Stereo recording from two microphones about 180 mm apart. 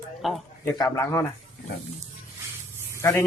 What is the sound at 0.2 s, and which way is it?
Speech, centre (ahead or behind).